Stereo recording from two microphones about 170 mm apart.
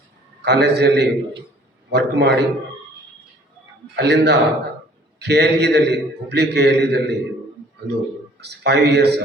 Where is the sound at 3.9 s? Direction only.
80° right.